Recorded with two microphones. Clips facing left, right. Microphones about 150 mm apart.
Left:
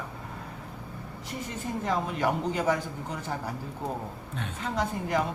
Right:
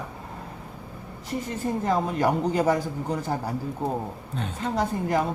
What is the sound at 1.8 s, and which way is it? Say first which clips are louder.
A man's voice: right 4 dB; 40° right (ahead or behind).